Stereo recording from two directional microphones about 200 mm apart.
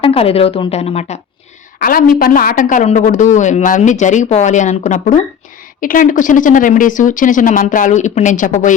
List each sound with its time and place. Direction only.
0.0 s a woman's voice: 30° left (ahead or behind)
1.8 s a woman's voice: 45° left (ahead or behind)